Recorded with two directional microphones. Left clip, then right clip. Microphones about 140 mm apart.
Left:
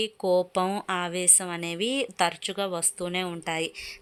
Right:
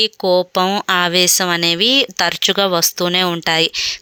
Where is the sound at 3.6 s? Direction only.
20° right (ahead or behind).